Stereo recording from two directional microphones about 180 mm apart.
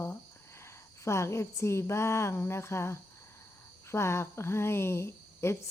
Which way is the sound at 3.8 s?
15° left (ahead or behind).